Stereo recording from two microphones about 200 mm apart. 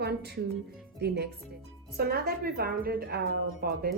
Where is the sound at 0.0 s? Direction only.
55° right (ahead or behind).